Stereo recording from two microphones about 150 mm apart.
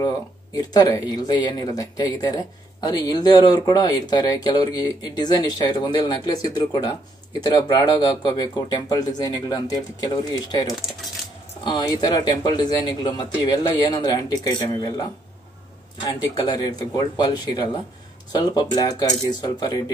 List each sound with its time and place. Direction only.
0.0 s speech: 25° left (ahead or behind)